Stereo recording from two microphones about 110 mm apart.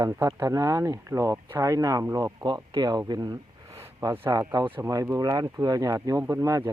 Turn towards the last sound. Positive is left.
turn(degrees=-30)  # may be behind; listen again after turning